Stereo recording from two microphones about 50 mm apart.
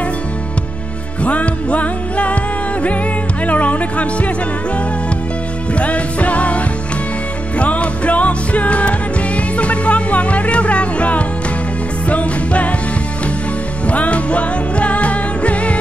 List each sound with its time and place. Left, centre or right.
1.2 s music: left
3.4 s music: left
5.7 s music: left
13.8 s music: left